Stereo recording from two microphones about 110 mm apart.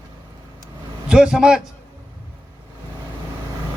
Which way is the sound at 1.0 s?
5° right (ahead or behind).